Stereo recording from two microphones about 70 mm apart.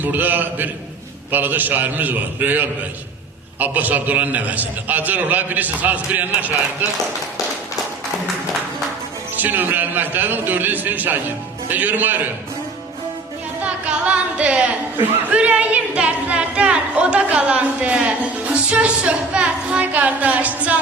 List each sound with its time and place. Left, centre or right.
0.0 s a woman's voice: right
9.3 s a woman's voice: right
13.6 s a woman's voice: centre